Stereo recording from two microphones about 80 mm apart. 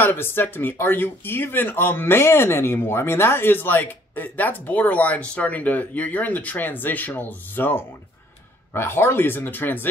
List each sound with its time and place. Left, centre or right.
0.0 s speech: left